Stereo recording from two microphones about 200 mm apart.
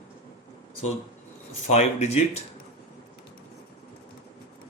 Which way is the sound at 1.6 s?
35° left (ahead or behind).